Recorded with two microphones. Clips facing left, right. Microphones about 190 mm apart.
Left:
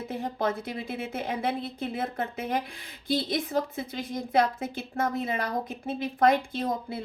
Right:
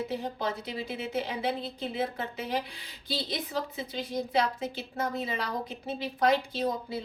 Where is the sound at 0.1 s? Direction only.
50° left (ahead or behind).